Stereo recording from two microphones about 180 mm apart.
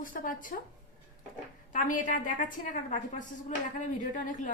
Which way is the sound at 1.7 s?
45° left (ahead or behind).